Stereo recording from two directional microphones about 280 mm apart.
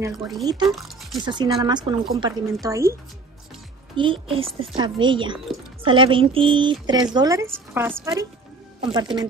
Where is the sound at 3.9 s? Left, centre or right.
Centre.